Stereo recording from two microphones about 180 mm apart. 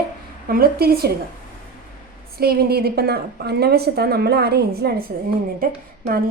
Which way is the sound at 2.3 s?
60° right (ahead or behind).